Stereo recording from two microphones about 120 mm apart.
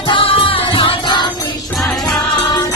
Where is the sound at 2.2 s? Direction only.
35° left (ahead or behind).